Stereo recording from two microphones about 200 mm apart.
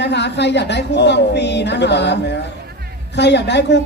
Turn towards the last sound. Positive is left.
turn(degrees=60)  # may be behind; listen again after turning